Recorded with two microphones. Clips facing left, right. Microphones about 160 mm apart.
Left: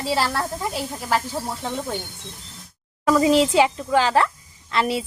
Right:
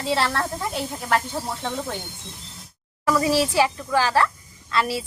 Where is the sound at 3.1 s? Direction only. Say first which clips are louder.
Left 4 dB; 20° left (ahead or behind).